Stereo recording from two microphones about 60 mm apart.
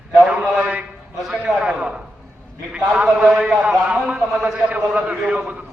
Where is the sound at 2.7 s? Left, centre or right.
Centre.